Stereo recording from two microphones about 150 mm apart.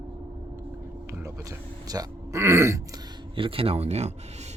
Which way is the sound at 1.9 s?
20° right (ahead or behind).